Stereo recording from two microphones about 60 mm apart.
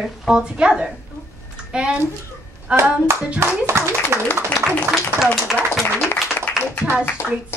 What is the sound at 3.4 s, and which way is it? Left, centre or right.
Speech, right.